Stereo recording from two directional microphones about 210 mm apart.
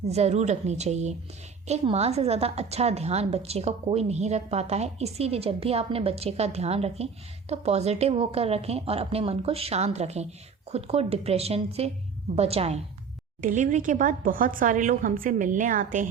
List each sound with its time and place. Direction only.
0.0 s a woman's voice: 30° right (ahead or behind)